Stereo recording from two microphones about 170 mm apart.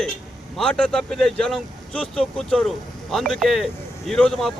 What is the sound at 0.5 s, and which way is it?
Speech, 5° left (ahead or behind).